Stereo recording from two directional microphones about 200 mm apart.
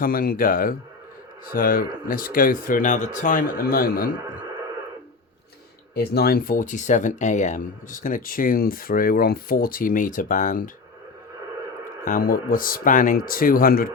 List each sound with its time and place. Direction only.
0.0 s speech: 45° left (ahead or behind)
5.9 s speech: 50° left (ahead or behind)
11.9 s speech: 45° left (ahead or behind)